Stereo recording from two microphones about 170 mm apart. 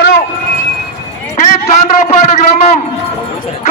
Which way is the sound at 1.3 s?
40° left (ahead or behind).